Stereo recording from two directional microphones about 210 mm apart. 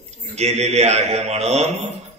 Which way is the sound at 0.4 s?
30° right (ahead or behind).